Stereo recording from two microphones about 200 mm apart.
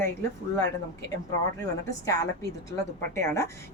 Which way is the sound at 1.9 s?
15° left (ahead or behind).